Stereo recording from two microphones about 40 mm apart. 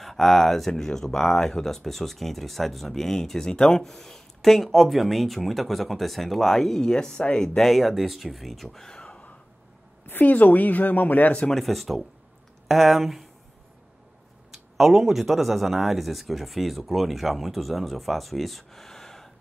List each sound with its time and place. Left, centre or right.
0.0 s speech: centre; by 7.5 s left
7.5 s speech: centre
7.8 s speech: centre
8.6 s speech: centre
8.9 s a sound: left
10.0 s a woman's voice: left
11.5 s speech: centre
14.5 s speech: centre